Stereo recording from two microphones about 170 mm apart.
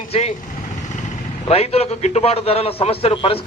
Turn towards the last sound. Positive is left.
turn(degrees=30)  # may be behind; listen again after turning